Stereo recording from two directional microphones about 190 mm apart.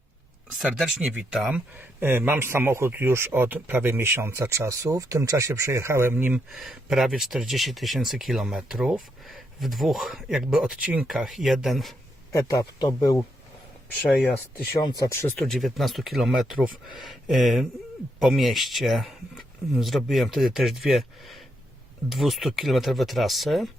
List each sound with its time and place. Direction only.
0.6 s speech: centre (ahead or behind)
12.3 s speech: 20° left (ahead or behind)
14.1 s speech: 5° left (ahead or behind)
14.8 s speech: 20° left (ahead or behind)
15.4 s speech: centre (ahead or behind)